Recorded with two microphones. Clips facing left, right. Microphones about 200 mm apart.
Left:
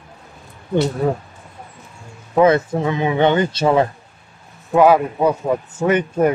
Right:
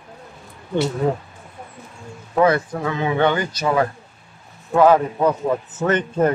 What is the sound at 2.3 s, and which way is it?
Speech, 20° left (ahead or behind).